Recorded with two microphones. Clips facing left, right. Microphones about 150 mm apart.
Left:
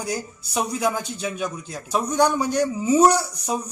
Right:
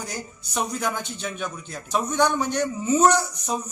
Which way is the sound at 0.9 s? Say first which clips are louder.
Left 3 dB; 35° left (ahead or behind).